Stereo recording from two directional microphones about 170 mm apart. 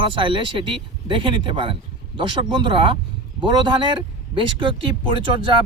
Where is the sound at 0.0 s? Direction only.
30° right (ahead or behind).